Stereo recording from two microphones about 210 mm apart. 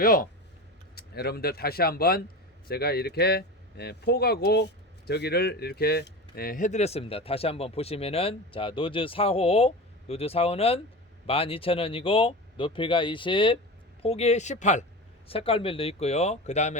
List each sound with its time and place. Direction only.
0.0 s speech: 40° left (ahead or behind)